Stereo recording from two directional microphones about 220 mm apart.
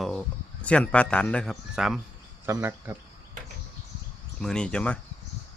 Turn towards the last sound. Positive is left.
turn(degrees=5)  # may be behind; listen again after turning